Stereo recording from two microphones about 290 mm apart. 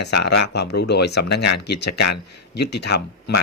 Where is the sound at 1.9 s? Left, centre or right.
Left.